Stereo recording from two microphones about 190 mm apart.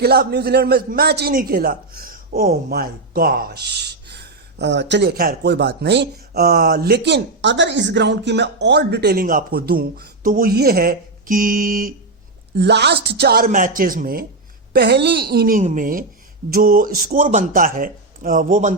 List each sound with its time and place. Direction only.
0.0 s a man's voice: 55° right (ahead or behind)
12.5 s a man's voice: 60° right (ahead or behind)
14.7 s a man's voice: 60° right (ahead or behind); by 18.7 s 40° right (ahead or behind)